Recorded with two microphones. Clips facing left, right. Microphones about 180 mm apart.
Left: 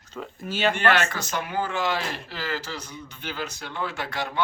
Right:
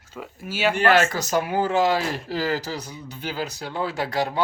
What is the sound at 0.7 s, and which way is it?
Speech, 40° right (ahead or behind).